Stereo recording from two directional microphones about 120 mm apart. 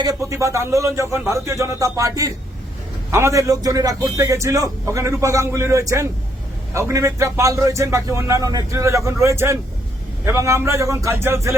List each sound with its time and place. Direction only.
0.0 s a man's voice: 30° right (ahead or behind)